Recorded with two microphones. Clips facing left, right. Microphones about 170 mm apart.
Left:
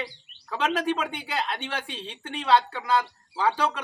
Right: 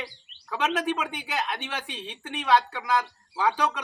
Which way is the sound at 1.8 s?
15° right (ahead or behind).